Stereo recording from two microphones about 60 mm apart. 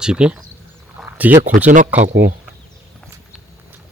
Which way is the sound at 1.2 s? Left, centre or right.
Right.